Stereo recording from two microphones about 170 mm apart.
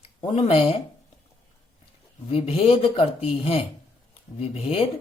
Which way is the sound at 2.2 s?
35° left (ahead or behind).